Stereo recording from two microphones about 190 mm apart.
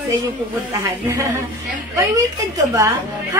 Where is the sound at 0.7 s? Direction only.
15° right (ahead or behind).